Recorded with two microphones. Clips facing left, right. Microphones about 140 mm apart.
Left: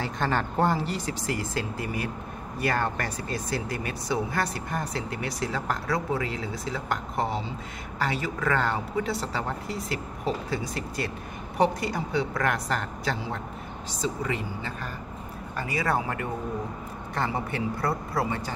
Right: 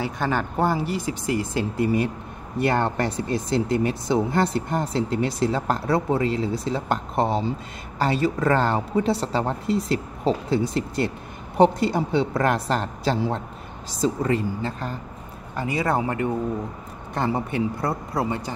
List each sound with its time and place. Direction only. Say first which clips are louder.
0.0 s speech: right 3 dB; 5° right (ahead or behind); by 15.0 s 30° right (ahead or behind)
15.5 s speech: right 4 dB; 20° right (ahead or behind)
17.5 s speech: right 3 dB; 20° right (ahead or behind)